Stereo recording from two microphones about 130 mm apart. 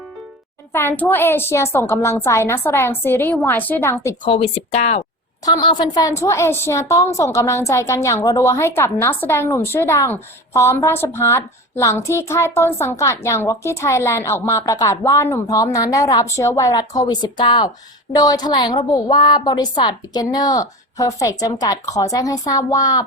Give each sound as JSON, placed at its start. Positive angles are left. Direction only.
{"t": 0.7, "sound": "a woman's voice", "side_deg": 15}
{"t": 4.3, "sound": "speech", "side_deg": 50}
{"t": 5.5, "sound": "a woman's voice", "side_deg": 35}